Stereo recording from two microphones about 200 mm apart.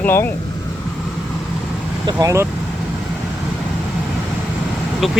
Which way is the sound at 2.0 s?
20° right (ahead or behind).